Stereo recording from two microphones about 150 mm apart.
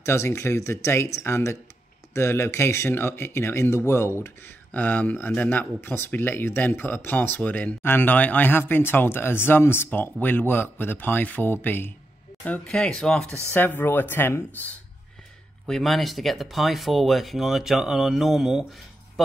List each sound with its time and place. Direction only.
0.0 s speech: 20° left (ahead or behind)
15.6 s speech: centre (ahead or behind)